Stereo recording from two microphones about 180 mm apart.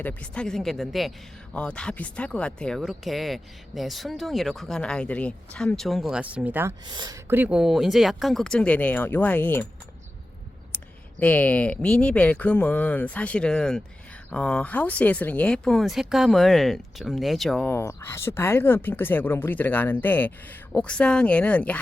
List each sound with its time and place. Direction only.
0.0 s speech: 5° left (ahead or behind); by 6.7 s 10° right (ahead or behind)
6.9 s speech: 25° right (ahead or behind)
7.3 s speech: 10° right (ahead or behind); by 9.6 s 10° left (ahead or behind)
11.2 s speech: 10° left (ahead or behind)